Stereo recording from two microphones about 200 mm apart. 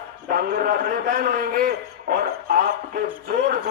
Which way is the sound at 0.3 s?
50° right (ahead or behind).